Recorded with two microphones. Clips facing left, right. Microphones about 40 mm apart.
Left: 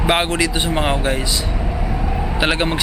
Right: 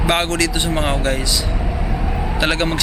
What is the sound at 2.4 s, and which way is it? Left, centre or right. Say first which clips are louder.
Speech: even; centre.